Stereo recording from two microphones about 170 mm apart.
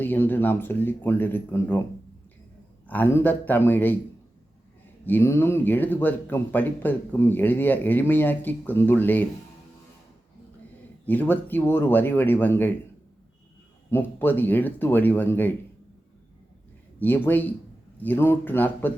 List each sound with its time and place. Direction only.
0.0 s speech: 10° left (ahead or behind)
2.8 s speech: 10° left (ahead or behind)
5.0 s speech: 10° left (ahead or behind)
11.0 s speech: 10° left (ahead or behind)
13.9 s speech: 10° left (ahead or behind)
17.0 s speech: 10° left (ahead or behind)